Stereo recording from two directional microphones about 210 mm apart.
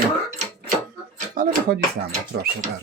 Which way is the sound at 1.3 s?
40° right (ahead or behind).